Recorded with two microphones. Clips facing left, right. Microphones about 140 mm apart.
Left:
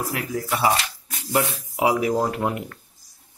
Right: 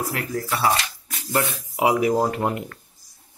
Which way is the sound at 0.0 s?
5° left (ahead or behind).